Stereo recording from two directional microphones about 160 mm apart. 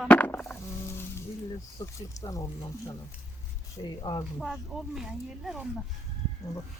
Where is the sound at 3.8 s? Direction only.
30° left (ahead or behind).